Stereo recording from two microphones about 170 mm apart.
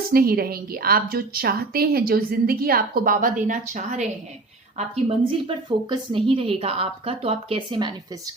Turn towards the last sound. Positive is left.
turn(degrees=-25)  # may be behind; listen again after turning